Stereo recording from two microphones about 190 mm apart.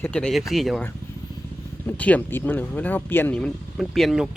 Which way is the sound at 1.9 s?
10° left (ahead or behind).